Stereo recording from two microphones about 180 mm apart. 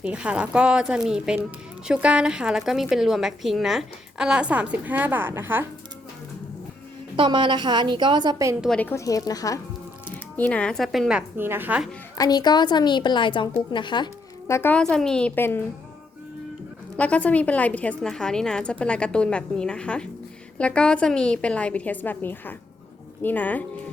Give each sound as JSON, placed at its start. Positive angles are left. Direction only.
{"t": 0.0, "sound": "speech", "side_deg": -5}
{"t": 7.2, "sound": "a woman's voice", "side_deg": -25}
{"t": 8.6, "sound": "speech", "side_deg": 5}
{"t": 10.3, "sound": "speech", "side_deg": 5}
{"t": 11.3, "sound": "speech", "side_deg": -10}
{"t": 12.1, "sound": "a woman's voice", "side_deg": 20}
{"t": 17.0, "sound": "speech", "side_deg": 5}